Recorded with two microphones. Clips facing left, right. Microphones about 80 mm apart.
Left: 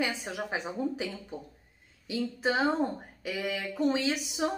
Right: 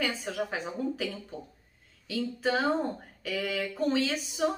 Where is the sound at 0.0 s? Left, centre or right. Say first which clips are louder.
Right 1 dB; centre.